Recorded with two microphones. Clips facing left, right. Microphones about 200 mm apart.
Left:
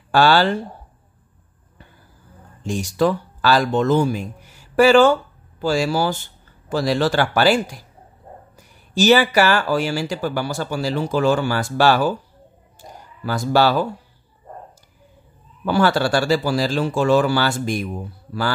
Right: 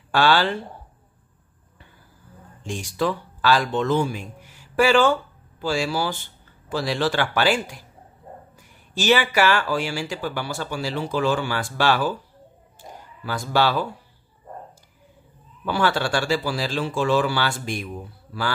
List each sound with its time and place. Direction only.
0.1 s speech: 40° left (ahead or behind)
2.6 s speech: 40° left (ahead or behind)
8.9 s speech: 40° left (ahead or behind)
13.2 s speech: 45° left (ahead or behind)
15.6 s speech: 40° left (ahead or behind)